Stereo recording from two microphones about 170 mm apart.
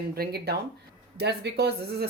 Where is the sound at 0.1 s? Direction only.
65° right (ahead or behind).